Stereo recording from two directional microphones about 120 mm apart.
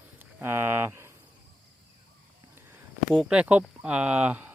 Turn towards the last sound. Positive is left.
turn(degrees=-10)  # may be behind; listen again after turning